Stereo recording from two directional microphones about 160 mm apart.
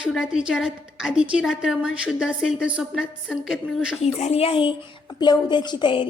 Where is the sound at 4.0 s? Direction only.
40° left (ahead or behind).